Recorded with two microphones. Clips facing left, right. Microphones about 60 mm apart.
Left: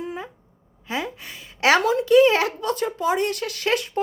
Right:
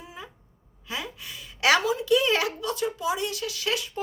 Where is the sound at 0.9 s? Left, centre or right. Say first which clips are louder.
Left 6 dB; left.